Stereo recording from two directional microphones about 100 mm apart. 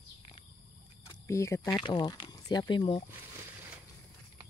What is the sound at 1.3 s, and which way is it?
Speech, 30° left (ahead or behind).